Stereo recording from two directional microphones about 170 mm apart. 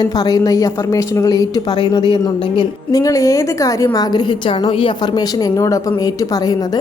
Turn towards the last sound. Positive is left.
turn(degrees=20)  # may be behind; listen again after turning